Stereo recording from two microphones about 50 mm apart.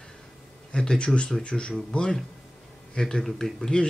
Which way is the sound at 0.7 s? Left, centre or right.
Centre.